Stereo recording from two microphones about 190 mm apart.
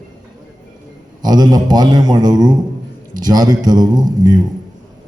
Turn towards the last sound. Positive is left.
turn(degrees=-20)  # may be behind; listen again after turning